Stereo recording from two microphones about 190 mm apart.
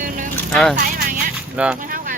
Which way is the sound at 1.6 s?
5° right (ahead or behind).